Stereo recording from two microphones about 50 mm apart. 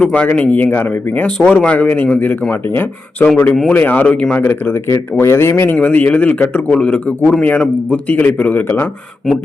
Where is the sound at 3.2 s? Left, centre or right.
Left.